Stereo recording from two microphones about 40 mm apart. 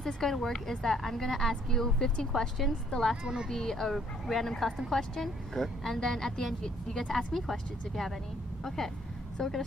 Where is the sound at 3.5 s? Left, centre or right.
Centre.